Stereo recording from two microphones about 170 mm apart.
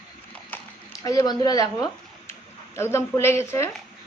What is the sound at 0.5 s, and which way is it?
Clip-clop, 10° left (ahead or behind).